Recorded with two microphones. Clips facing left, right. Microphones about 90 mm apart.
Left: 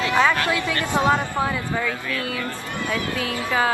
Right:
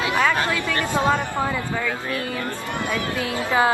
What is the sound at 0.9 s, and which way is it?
Speech, 20° left (ahead or behind).